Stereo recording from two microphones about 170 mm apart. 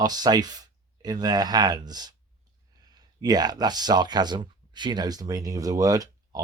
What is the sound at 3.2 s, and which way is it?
Speech, 25° right (ahead or behind).